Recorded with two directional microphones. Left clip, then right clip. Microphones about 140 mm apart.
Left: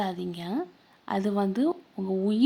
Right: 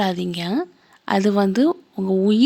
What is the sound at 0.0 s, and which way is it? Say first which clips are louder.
A woman's voice: right 9 dB; 30° right (ahead or behind).